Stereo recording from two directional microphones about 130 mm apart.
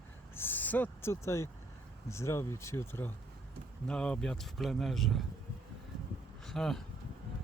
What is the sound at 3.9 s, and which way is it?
Speech, 5° left (ahead or behind).